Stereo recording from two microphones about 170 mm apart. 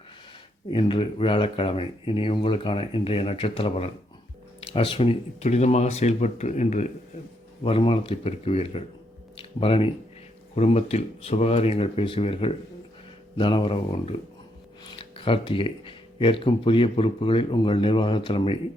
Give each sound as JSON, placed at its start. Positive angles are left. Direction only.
{"t": 0.7, "sound": "speech", "side_deg": 30}
{"t": 7.6, "sound": "speech", "side_deg": 35}